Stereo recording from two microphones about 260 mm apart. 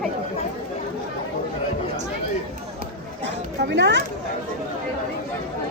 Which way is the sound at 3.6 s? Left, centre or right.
Right.